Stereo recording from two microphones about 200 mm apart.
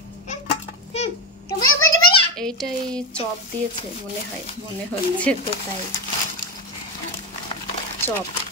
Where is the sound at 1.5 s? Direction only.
20° left (ahead or behind).